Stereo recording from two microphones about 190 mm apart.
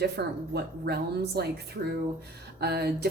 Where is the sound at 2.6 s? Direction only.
60° right (ahead or behind).